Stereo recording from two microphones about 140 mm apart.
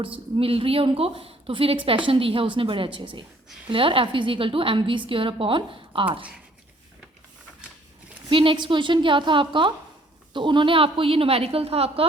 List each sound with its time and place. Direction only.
0.3 s a woman's voice: 40° right (ahead or behind)
8.3 s a woman's voice: 35° right (ahead or behind)